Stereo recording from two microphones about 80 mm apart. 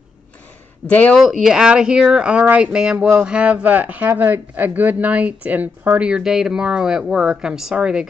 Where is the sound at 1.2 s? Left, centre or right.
Centre; by 6.1 s right.